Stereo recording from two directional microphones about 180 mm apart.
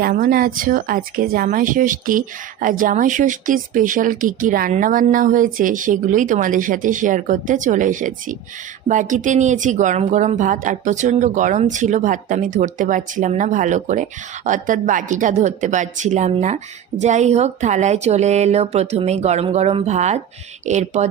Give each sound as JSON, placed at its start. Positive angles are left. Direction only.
{"t": 0.0, "sound": "speech", "side_deg": -50}